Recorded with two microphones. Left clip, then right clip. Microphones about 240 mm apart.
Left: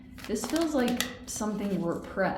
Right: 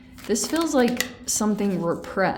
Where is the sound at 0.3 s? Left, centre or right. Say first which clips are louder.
Right 6 dB; right.